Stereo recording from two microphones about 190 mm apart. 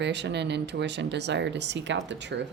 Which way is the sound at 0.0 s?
65° right (ahead or behind).